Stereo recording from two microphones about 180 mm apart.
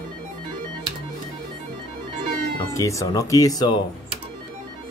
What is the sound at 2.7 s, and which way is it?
Speech, 15° left (ahead or behind).